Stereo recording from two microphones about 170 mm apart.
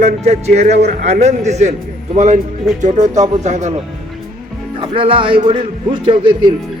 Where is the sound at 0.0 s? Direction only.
45° right (ahead or behind).